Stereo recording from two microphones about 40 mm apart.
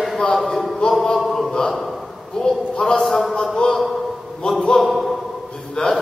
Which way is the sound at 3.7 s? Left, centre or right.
Centre.